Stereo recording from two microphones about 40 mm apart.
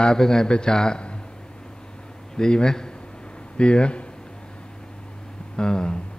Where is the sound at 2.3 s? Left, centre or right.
Centre.